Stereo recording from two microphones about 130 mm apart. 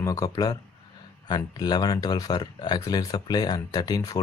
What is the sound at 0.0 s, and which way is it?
Speech, 25° left (ahead or behind).